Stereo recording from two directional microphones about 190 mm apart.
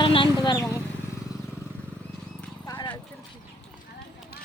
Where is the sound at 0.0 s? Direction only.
25° left (ahead or behind).